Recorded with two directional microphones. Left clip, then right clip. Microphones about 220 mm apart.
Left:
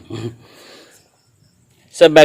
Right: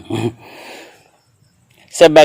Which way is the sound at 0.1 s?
25° right (ahead or behind).